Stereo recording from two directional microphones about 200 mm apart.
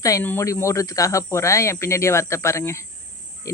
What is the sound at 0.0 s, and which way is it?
Speech, 15° left (ahead or behind).